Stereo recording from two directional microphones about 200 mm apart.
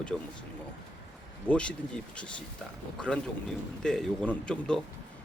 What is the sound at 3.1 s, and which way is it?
Speech, 5° left (ahead or behind).